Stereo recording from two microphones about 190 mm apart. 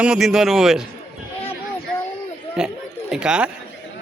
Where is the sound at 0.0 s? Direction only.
5° right (ahead or behind).